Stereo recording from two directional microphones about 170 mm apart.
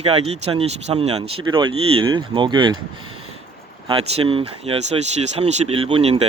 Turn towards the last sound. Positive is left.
turn(degrees=-35)  # may be behind; listen again after turning